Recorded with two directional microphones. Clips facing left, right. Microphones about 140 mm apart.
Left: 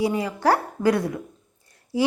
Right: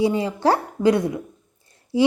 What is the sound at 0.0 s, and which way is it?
A woman's voice, 25° right (ahead or behind).